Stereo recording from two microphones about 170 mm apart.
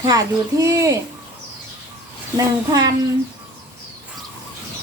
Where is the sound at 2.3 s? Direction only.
20° right (ahead or behind).